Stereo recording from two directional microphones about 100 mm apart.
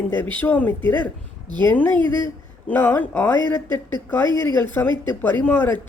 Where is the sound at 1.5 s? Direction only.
50° right (ahead or behind).